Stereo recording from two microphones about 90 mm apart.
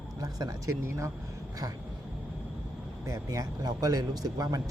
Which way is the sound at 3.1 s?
40° right (ahead or behind).